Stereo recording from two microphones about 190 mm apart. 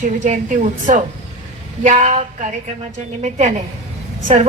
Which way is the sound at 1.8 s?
40° right (ahead or behind).